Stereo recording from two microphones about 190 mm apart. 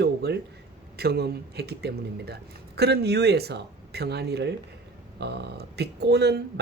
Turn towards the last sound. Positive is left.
turn(degrees=-60)  # may be behind; listen again after turning